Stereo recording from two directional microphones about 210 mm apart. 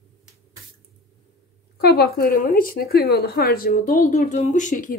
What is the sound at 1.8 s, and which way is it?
Speech, 50° left (ahead or behind).